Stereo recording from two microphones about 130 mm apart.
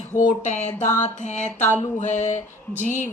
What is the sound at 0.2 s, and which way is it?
A woman's voice, 70° left (ahead or behind).